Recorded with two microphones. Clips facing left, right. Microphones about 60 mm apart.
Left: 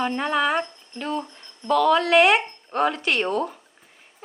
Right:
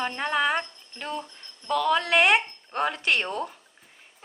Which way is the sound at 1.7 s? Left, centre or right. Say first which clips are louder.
Left 5 dB; centre.